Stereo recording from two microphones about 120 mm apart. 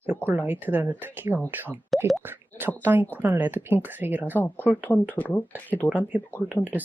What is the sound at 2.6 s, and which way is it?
Speech, 15° right (ahead or behind).